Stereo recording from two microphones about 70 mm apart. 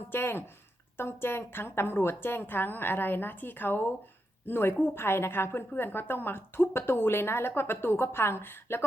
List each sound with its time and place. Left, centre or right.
0.1 s a woman's voice: left